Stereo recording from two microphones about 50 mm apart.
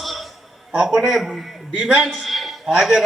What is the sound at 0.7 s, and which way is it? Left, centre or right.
A man's voice, centre.